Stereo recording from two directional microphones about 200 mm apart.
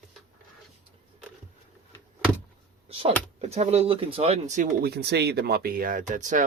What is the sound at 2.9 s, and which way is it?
Speech, 25° right (ahead or behind).